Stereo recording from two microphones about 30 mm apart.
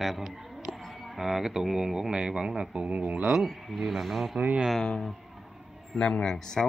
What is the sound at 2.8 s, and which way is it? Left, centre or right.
Speech, right.